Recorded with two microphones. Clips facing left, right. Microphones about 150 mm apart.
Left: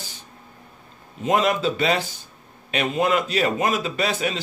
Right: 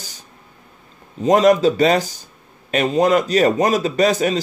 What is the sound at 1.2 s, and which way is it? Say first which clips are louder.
A man's voice: right 8 dB; 40° right (ahead or behind).